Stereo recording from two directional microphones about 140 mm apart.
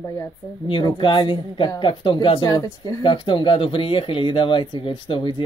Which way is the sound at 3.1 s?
35° left (ahead or behind).